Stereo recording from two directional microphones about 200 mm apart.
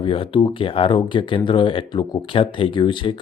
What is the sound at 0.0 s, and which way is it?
Speech, 25° left (ahead or behind).